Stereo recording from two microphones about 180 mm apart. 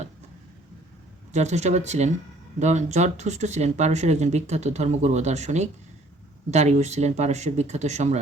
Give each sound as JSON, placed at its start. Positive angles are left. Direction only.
{"t": 1.3, "sound": "speech", "side_deg": -40}